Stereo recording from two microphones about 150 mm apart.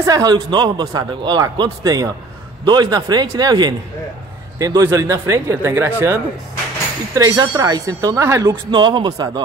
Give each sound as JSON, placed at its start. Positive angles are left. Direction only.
{"t": 0.0, "sound": "speech", "side_deg": -25}
{"t": 7.2, "sound": "speech", "side_deg": -20}